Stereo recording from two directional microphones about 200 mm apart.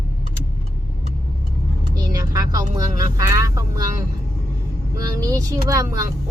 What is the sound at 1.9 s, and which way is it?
Speech, 20° right (ahead or behind).